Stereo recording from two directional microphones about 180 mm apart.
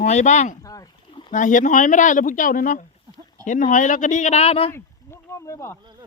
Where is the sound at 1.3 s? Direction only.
45° left (ahead or behind).